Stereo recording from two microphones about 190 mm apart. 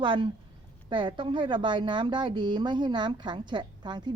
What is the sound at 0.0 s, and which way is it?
Speech, 25° right (ahead or behind).